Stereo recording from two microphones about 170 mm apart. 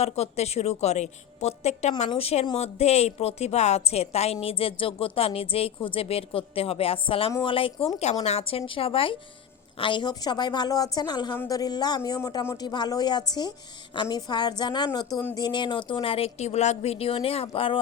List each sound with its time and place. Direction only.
0.0 s a woman's voice: 40° left (ahead or behind)